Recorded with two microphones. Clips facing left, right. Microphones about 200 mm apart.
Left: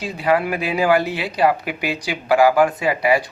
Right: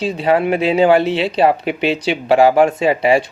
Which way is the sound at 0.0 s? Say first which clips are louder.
Right 4 dB; 25° right (ahead or behind).